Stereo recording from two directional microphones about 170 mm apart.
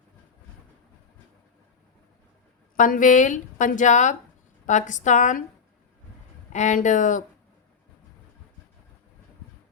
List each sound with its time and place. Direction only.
2.7 s a woman's voice: 50° left (ahead or behind)
6.5 s a woman's voice: 45° left (ahead or behind)